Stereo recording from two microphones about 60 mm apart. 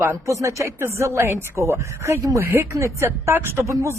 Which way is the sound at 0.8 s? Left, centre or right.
Right.